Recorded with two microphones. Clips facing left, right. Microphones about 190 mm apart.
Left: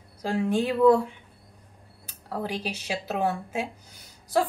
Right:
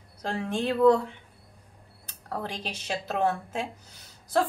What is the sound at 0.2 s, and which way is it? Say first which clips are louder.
Speech: left 4 dB; 5° left (ahead or behind).